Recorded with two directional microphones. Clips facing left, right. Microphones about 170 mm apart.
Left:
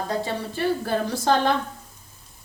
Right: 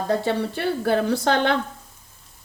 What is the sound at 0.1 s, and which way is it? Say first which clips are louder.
Speech: right 5 dB; 65° right (ahead or behind).